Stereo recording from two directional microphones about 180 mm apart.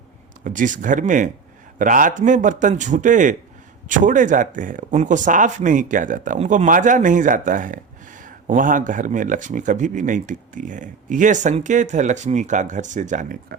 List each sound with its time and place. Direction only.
0.4 s speech: 45° right (ahead or behind)